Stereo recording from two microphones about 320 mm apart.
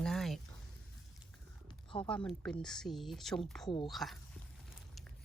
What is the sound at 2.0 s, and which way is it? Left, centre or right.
Speech, centre.